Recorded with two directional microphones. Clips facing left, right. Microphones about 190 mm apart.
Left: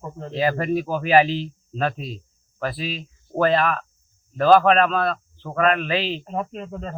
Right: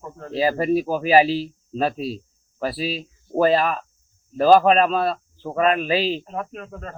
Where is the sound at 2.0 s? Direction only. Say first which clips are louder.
Right 6 dB; 35° right (ahead or behind).